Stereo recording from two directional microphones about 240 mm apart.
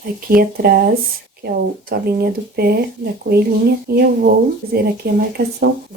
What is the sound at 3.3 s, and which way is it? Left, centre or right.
Speech, right.